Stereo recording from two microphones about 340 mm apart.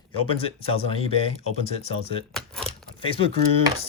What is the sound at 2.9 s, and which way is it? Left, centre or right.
Speech, centre.